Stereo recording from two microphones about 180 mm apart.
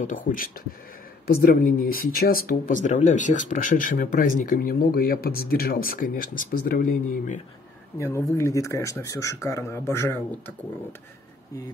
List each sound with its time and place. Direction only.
0.0 s speech: 50° left (ahead or behind)
8.0 s speech: 15° left (ahead or behind)